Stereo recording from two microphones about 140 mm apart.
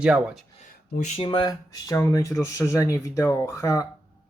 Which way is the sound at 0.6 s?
55° left (ahead or behind).